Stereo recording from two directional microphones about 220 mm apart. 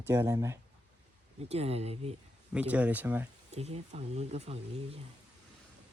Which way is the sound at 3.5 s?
30° right (ahead or behind).